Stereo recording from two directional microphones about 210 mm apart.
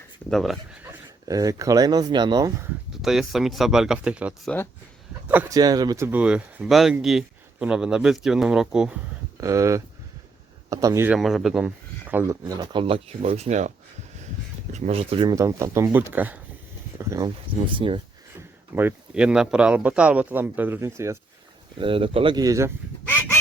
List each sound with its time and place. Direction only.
0.3 s speech: centre (ahead or behind)
1.3 s speech: 15° right (ahead or behind)
2.9 s speech: centre (ahead or behind); by 6.1 s 20° right (ahead or behind)
6.1 s speech: 5° right (ahead or behind)
9.4 s speech: 15° right (ahead or behind)
18.7 s speech: 10° right (ahead or behind)
21.8 s speech: 25° right (ahead or behind)